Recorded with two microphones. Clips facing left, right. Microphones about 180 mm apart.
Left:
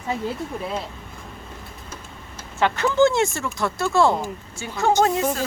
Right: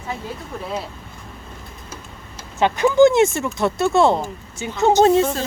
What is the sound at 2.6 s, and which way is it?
Speech, 15° right (ahead or behind).